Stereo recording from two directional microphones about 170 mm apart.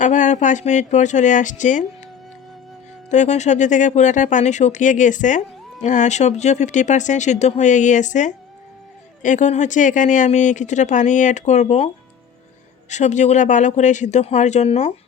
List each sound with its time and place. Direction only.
0.0 s speech: 45° left (ahead or behind)
3.1 s speech: 45° left (ahead or behind)
12.9 s speech: 45° left (ahead or behind)